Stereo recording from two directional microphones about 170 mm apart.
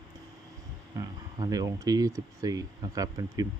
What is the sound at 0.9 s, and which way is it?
Speech, 20° right (ahead or behind).